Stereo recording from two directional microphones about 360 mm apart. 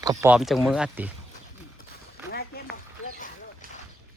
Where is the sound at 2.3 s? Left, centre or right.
Left.